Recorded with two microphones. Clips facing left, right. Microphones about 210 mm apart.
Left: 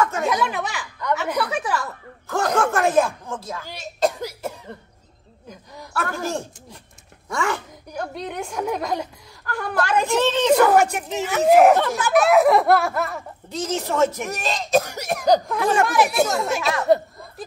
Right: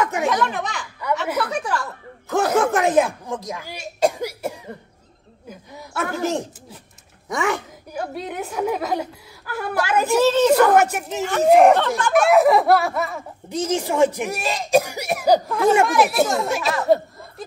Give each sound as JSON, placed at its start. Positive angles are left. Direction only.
{"t": 0.0, "sound": "a sound", "side_deg": -15}
{"t": 0.3, "sound": "speech", "side_deg": 5}
{"t": 1.1, "sound": "a woman's voice", "side_deg": -5}
{"t": 2.6, "sound": "speech", "side_deg": -20}
{"t": 6.2, "sound": "speech", "side_deg": -20}
{"t": 7.9, "sound": "a woman's voice", "side_deg": -5}
{"t": 13.5, "sound": "a woman's voice", "side_deg": -10}